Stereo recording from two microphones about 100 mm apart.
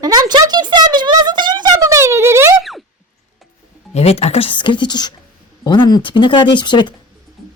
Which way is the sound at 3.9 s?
90° left.